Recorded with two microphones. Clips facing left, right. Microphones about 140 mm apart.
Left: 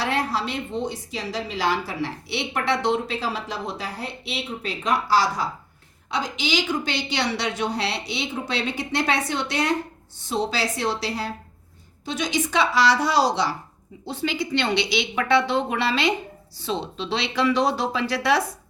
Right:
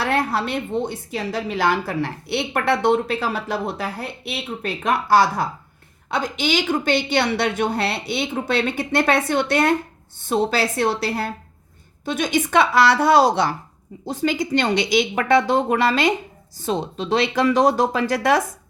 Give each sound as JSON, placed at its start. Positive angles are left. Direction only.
{"t": 0.0, "sound": "a woman's voice", "side_deg": -55}
{"t": 14.0, "sound": "speech", "side_deg": -45}